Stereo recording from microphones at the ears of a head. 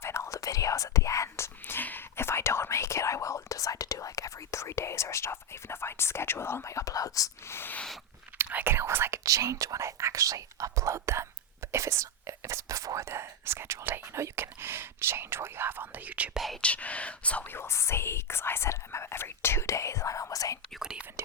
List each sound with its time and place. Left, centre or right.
0.0 s whispering: left
8.4 s whispering: right
16.5 s whispering: centre
17.6 s whispering: left